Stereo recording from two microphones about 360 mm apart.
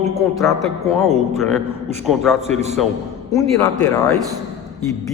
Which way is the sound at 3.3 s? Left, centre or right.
Centre.